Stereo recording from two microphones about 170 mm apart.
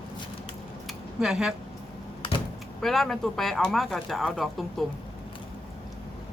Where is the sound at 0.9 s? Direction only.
Centre (ahead or behind).